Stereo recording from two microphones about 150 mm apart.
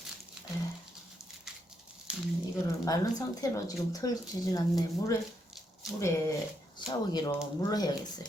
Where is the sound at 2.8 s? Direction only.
25° left (ahead or behind).